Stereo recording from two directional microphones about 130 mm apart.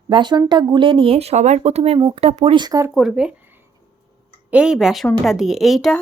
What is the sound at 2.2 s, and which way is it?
Speech, 50° right (ahead or behind).